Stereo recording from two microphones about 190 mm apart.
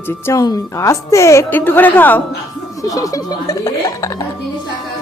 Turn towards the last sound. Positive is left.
turn(degrees=15)  # may be behind; listen again after turning